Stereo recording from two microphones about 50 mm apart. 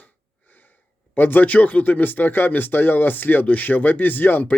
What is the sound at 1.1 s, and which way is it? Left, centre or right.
Speech, left.